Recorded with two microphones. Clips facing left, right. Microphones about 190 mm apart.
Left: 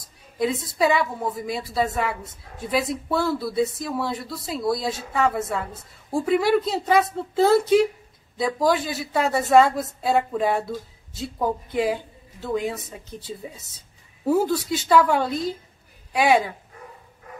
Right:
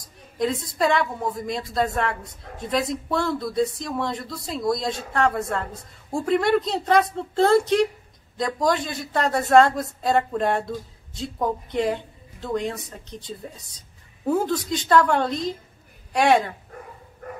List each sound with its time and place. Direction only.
0.4 s speech: 5° left (ahead or behind)
17.2 s dog: 60° right (ahead or behind)